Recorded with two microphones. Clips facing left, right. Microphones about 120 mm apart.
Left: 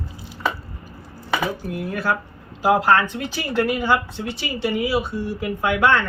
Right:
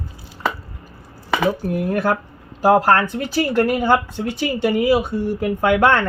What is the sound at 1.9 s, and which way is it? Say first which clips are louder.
Speech: right 4 dB; 55° right (ahead or behind).